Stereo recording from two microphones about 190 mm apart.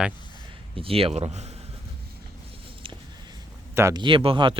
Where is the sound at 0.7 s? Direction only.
30° right (ahead or behind).